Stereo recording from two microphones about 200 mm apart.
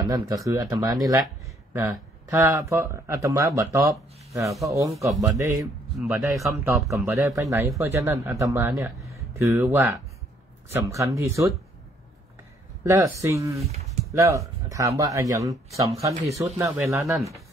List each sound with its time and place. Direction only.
0.0 s speech: 15° right (ahead or behind)
12.8 s speech: 15° right (ahead or behind)